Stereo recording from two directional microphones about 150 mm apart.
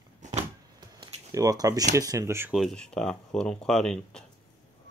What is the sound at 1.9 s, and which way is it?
Speech, 20° right (ahead or behind).